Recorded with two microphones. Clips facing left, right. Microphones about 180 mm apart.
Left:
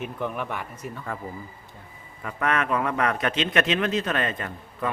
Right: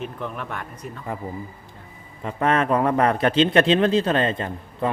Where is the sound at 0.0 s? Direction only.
10° left (ahead or behind).